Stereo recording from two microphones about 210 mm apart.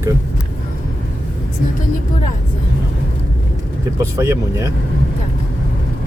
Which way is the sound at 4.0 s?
15° right (ahead or behind).